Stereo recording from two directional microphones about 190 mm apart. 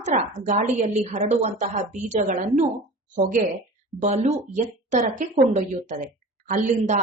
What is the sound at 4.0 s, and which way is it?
A woman's voice, 35° right (ahead or behind).